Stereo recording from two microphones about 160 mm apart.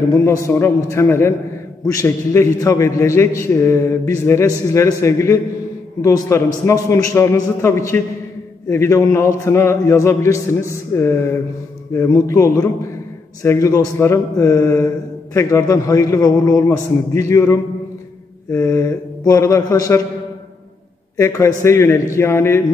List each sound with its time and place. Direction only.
0.5 s a man's voice: 15° left (ahead or behind)
21.2 s a man's voice: 20° left (ahead or behind)